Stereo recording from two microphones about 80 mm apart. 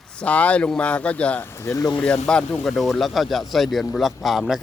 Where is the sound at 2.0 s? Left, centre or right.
Centre.